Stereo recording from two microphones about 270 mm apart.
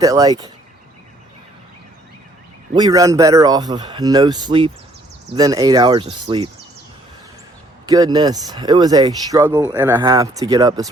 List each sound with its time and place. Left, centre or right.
0.0 s speech: centre
2.7 s speech: centre
7.9 s speech: centre